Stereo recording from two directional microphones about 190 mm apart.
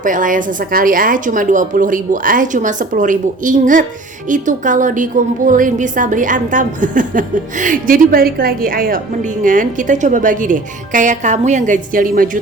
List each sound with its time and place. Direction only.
0.0 s a woman's voice: 45° right (ahead or behind)